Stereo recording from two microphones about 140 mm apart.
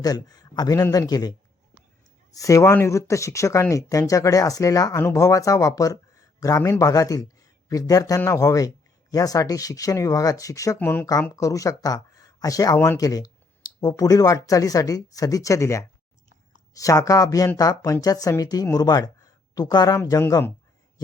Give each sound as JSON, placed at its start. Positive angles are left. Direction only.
{"t": 0.0, "sound": "a man's voice", "side_deg": 25}